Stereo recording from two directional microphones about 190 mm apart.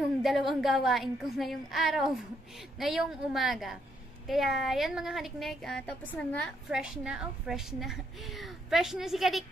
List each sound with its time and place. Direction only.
0.2 s a woman's voice: centre (ahead or behind)